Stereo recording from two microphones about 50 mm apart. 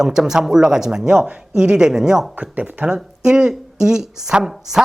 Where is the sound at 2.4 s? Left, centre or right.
Right.